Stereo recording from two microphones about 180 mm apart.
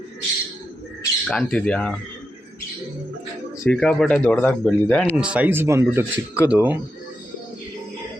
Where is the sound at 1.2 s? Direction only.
5° left (ahead or behind).